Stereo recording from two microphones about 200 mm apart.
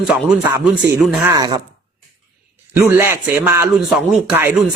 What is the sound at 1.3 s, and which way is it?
Speech, 20° right (ahead or behind).